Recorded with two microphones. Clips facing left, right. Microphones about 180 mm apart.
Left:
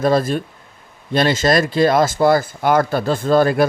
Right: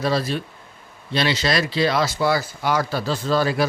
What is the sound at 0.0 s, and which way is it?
A man's voice, 50° left (ahead or behind).